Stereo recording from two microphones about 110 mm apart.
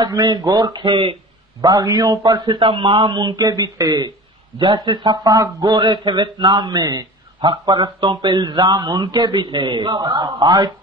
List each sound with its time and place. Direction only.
0.0 s a man's voice: 40° right (ahead or behind)
0.8 s speech: 55° right (ahead or behind)
1.6 s a man's voice: 35° right (ahead or behind)